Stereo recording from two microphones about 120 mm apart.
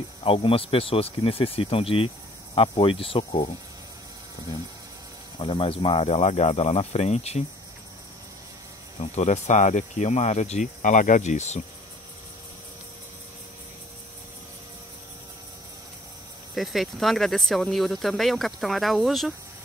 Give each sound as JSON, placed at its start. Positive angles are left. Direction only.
{"t": 0.2, "sound": "speech", "side_deg": 50}
{"t": 5.4, "sound": "speech", "side_deg": 50}
{"t": 9.1, "sound": "speech", "side_deg": 70}
{"t": 16.5, "sound": "speech", "side_deg": 0}